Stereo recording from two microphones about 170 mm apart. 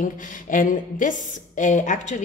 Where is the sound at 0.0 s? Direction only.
50° left (ahead or behind).